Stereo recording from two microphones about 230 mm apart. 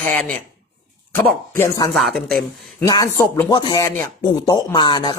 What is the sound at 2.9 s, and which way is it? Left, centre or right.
Speech, centre.